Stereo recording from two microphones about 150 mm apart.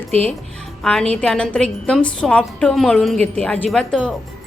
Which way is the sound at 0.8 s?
5° left (ahead or behind).